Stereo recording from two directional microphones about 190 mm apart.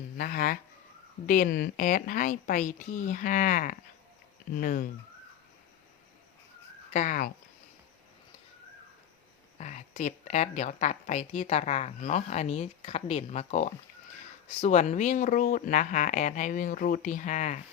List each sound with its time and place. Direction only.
0.2 s speech: 50° left (ahead or behind)
6.9 s speech: 40° left (ahead or behind)
9.6 s a woman's voice: 40° left (ahead or behind)